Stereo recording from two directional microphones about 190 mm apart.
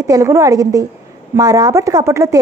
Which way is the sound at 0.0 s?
15° right (ahead or behind).